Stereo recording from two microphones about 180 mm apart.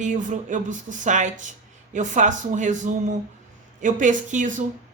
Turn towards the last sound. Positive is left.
turn(degrees=-45)  # may be behind; listen again after turning